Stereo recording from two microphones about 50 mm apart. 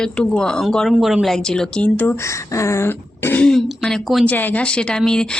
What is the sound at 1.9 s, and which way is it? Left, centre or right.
Speech, left.